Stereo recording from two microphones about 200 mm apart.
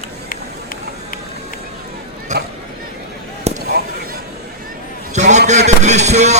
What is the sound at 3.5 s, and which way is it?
Basketball bounce, 35° right (ahead or behind).